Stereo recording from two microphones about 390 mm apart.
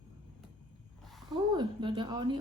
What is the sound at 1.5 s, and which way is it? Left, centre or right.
Speech, centre.